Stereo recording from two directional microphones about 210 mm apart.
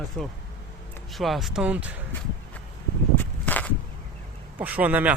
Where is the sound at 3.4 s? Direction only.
5° left (ahead or behind).